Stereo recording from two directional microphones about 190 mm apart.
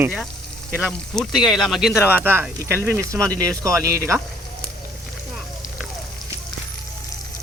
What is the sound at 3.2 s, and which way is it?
Speech, 5° left (ahead or behind).